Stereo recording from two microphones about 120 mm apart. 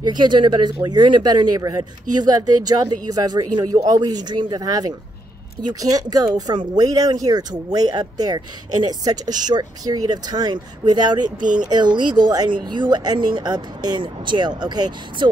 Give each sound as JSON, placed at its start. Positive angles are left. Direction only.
{"t": 0.0, "sound": "speech", "side_deg": -35}